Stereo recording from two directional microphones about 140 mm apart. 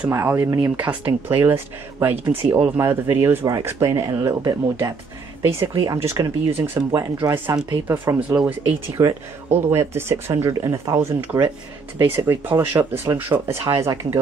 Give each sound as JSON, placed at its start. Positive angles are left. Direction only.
{"t": 0.1, "sound": "speech", "side_deg": -20}
{"t": 8.3, "sound": "speech", "side_deg": -5}
{"t": 8.9, "sound": "speech", "side_deg": -20}